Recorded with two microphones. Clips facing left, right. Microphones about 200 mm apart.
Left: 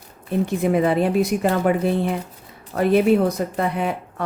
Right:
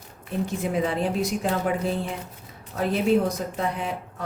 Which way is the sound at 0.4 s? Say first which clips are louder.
Left 7 dB; 60° left (ahead or behind).